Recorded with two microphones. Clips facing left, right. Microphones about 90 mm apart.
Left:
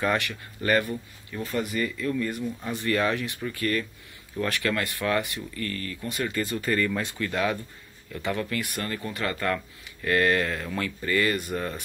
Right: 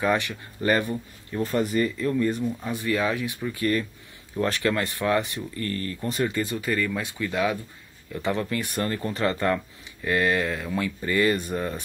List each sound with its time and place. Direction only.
0.0 s speech: 15° right (ahead or behind)
2.7 s speech: 10° right (ahead or behind)
4.4 s speech: 30° right (ahead or behind)
6.2 s speech: 20° right (ahead or behind)
6.6 s speech: 5° right (ahead or behind); by 11.6 s 20° right (ahead or behind)